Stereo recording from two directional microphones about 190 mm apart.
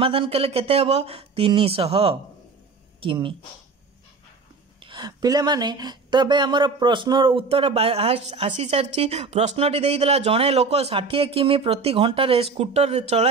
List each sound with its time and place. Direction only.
0.0 s speech: 30° right (ahead or behind)
4.8 s speech: 25° right (ahead or behind)